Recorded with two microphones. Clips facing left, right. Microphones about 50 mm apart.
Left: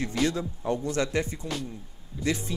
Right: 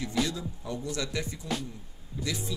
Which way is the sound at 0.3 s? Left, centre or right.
Left.